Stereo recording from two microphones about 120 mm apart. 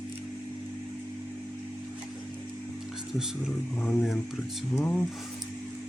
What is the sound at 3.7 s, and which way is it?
Speech, 15° left (ahead or behind).